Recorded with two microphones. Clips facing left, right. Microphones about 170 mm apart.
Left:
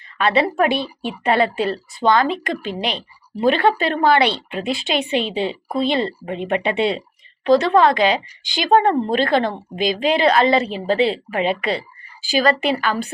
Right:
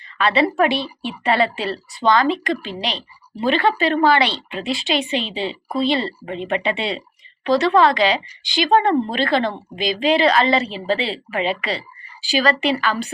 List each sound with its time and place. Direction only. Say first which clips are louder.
0.3 s a woman's voice: even; 50° left (ahead or behind)